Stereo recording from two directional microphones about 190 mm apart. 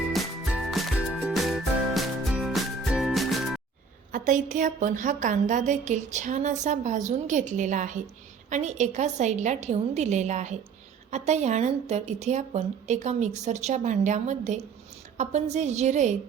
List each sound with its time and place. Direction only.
0.1 s music: centre (ahead or behind)
4.1 s a woman's voice: 40° right (ahead or behind)